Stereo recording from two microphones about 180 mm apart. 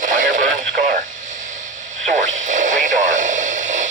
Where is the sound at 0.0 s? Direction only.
45° right (ahead or behind).